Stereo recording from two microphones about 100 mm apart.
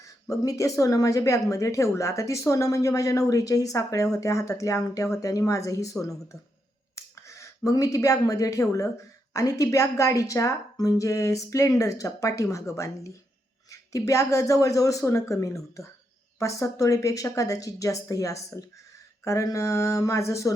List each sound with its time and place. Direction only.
0.0 s a woman's voice: 35° left (ahead or behind)